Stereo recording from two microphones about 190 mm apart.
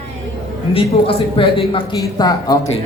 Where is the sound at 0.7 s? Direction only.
30° left (ahead or behind).